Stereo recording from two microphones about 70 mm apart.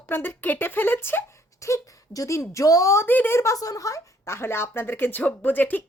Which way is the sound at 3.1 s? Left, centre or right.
Left.